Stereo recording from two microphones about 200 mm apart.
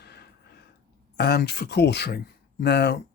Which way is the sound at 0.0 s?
55° left (ahead or behind).